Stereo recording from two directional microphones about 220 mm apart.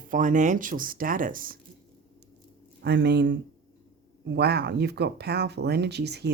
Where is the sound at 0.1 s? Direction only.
35° right (ahead or behind).